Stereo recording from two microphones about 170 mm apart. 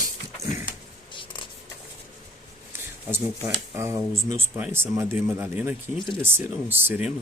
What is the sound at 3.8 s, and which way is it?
Speech, 15° right (ahead or behind).